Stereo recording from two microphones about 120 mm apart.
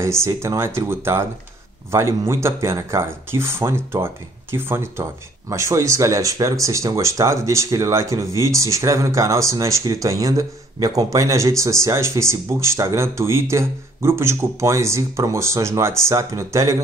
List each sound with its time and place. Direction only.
0.0 s speech: 25° right (ahead or behind)